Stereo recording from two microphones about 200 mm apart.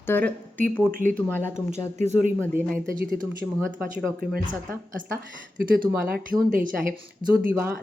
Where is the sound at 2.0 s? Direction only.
35° right (ahead or behind).